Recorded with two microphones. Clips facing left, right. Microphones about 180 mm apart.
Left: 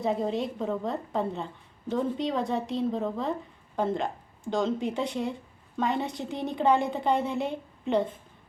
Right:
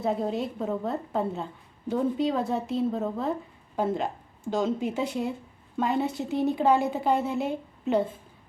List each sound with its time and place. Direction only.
0.0 s speech: 5° right (ahead or behind)